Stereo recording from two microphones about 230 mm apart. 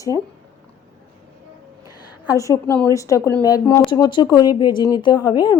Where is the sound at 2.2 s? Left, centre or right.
Centre.